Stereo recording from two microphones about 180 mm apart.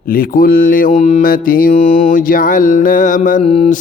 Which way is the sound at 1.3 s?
50° left (ahead or behind).